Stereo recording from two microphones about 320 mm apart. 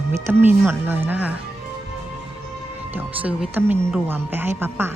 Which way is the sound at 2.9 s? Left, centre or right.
Centre.